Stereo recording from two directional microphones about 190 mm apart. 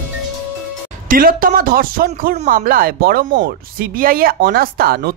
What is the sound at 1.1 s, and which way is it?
Speech, 50° right (ahead or behind).